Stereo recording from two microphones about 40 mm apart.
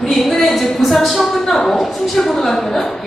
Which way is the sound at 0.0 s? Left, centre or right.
Centre.